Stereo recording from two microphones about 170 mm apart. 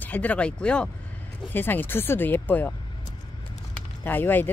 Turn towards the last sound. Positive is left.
turn(degrees=10)  # may be behind; listen again after turning